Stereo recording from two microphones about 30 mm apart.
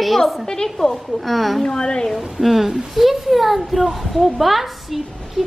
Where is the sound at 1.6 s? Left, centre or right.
Left.